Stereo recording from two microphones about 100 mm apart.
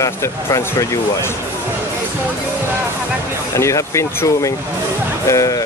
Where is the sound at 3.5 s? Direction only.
30° left (ahead or behind).